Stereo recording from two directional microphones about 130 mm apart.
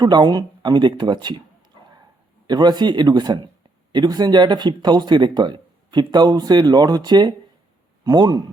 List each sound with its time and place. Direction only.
0.0 s speech: 35° right (ahead or behind)
2.5 s speech: 35° right (ahead or behind)